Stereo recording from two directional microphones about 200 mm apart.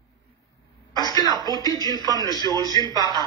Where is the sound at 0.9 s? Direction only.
20° left (ahead or behind).